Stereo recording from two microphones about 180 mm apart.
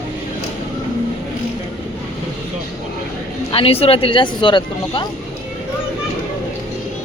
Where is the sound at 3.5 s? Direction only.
30° left (ahead or behind).